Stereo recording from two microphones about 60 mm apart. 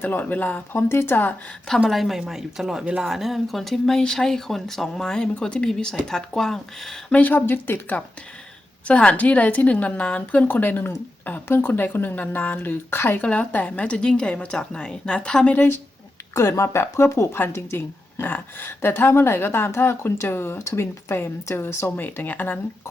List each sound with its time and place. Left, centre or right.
0.0 s a woman's voice: left
1.9 s speech: centre
7.1 s a woman's voice: left
8.9 s a woman's voice: centre; by 13.2 s left
13.2 s speech: left
15.5 s a woman's voice: left
16.3 s a woman's voice: left